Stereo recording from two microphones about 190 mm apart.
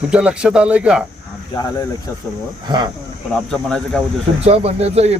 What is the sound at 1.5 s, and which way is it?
Speech, 20° left (ahead or behind).